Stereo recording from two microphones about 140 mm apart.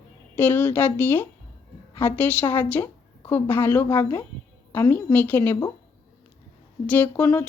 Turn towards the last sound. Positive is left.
turn(degrees=15)  # may be behind; listen again after turning